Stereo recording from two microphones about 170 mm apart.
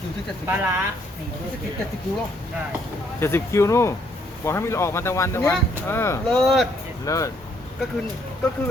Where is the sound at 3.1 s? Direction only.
15° left (ahead or behind).